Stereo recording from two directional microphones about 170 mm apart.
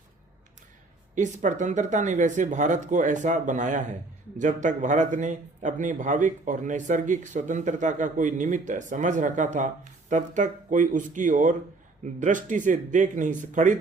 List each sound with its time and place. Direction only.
1.1 s speech: 45° right (ahead or behind)